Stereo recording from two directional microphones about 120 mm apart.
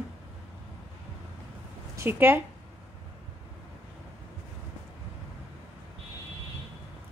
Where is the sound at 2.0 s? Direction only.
20° right (ahead or behind).